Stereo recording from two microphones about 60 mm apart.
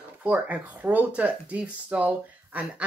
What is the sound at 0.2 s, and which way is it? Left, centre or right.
Speech, right.